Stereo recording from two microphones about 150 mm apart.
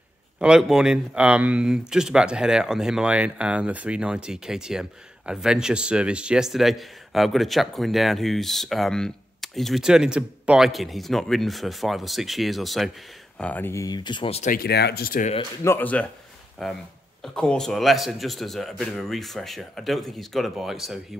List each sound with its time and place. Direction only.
0.4 s speech: 5° right (ahead or behind)
13.4 s speech: 10° left (ahead or behind); by 14.4 s 35° left (ahead or behind)
14.4 s speech: 80° left
15.6 s speech: 15° left (ahead or behind)